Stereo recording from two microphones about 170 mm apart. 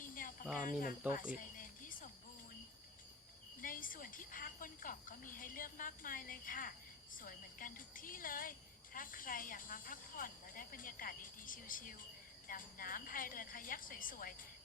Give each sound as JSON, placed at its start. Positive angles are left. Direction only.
{"t": 0.0, "sound": "cricket", "side_deg": 55}
{"t": 0.7, "sound": "a woman's voice", "side_deg": 55}
{"t": 1.3, "sound": "music", "side_deg": 55}
{"t": 3.6, "sound": "a woman's voice", "side_deg": 55}